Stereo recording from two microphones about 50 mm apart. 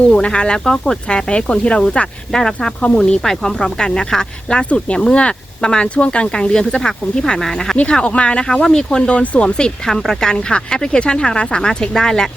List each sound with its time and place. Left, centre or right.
0.1 s speech: left
7.8 s speech: left